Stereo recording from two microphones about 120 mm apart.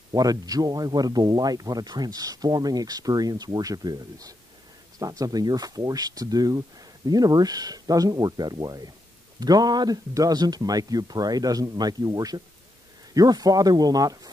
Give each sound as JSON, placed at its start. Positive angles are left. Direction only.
{"t": 0.1, "sound": "speech", "side_deg": -30}